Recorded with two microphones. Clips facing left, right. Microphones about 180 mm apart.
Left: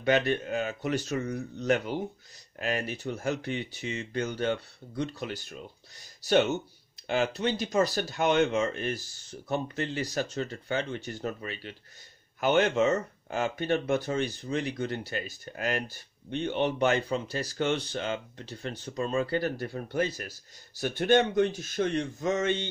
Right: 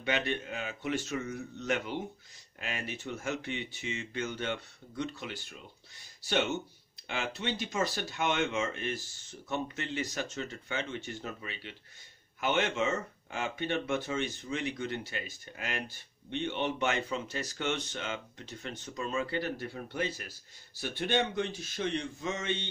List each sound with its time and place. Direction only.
0.0 s speech: 40° left (ahead or behind)
7.1 s speech: 40° left (ahead or behind)